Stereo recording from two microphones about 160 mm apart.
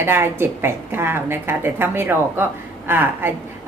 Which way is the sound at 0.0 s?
15° right (ahead or behind).